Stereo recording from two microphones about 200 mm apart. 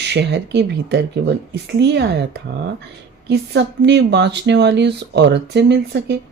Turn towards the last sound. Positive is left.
turn(degrees=-60)  # may be behind; listen again after turning